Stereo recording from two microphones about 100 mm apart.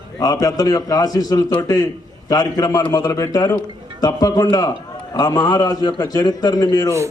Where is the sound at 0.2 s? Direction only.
40° left (ahead or behind).